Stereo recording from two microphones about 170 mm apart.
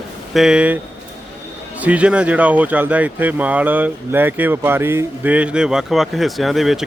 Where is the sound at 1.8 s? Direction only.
10° right (ahead or behind).